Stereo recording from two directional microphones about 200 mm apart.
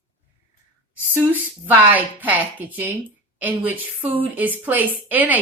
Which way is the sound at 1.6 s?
10° right (ahead or behind).